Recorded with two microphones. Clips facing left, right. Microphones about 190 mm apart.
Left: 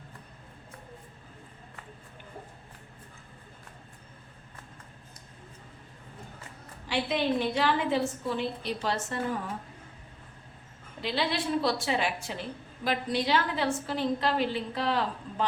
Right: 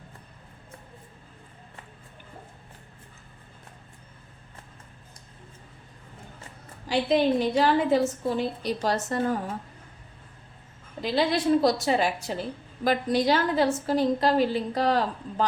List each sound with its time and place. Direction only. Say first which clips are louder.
6.8 s a woman's voice: right 6 dB; 40° right (ahead or behind)
11.0 s a woman's voice: right 6 dB; 40° right (ahead or behind)